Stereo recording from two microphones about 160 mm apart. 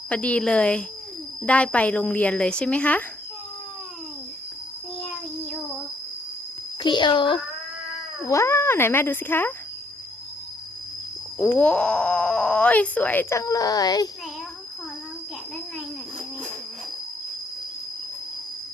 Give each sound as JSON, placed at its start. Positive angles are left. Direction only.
{"t": 0.1, "sound": "speech", "side_deg": 5}
{"t": 6.8, "sound": "speech", "side_deg": 30}
{"t": 8.2, "sound": "speech", "side_deg": 20}
{"t": 11.3, "sound": "speech", "side_deg": 10}
{"t": 13.4, "sound": "speech", "side_deg": 20}